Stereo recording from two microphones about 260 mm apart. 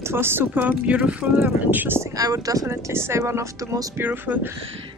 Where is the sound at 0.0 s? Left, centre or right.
Centre.